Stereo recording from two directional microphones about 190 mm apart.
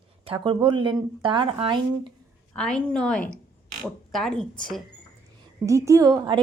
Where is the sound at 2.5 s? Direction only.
5° left (ahead or behind).